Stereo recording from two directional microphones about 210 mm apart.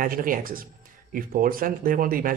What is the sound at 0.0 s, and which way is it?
Speech, 40° right (ahead or behind).